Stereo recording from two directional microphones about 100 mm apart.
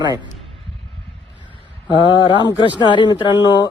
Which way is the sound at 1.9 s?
55° left (ahead or behind).